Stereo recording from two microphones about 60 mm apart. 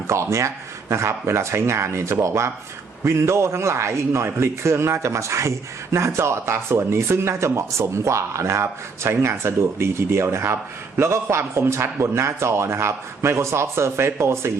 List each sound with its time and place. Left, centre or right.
0.1 s a man's voice: right